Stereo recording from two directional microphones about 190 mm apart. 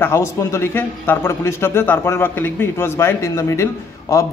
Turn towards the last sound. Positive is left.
turn(degrees=15)  # may be behind; listen again after turning